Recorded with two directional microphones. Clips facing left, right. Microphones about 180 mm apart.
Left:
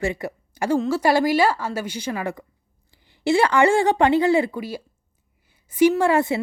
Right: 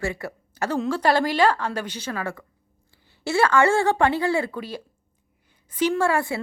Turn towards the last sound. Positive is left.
turn(degrees=20)  # may be behind; listen again after turning